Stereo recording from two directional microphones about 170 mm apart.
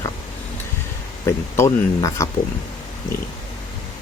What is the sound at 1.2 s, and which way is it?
Speech, 20° left (ahead or behind).